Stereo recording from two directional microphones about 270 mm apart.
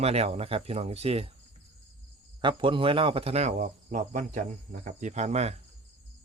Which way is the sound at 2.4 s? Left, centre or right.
Centre.